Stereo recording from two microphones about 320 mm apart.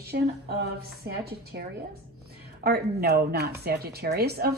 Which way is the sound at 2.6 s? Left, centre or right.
Right.